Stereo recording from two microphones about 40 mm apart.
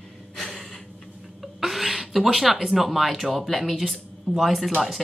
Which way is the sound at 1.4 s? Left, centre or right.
Centre.